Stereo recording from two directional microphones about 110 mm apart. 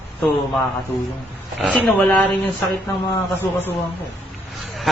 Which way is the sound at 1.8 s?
15° left (ahead or behind).